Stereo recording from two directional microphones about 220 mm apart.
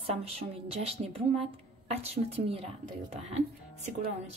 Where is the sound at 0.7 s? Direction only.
25° right (ahead or behind).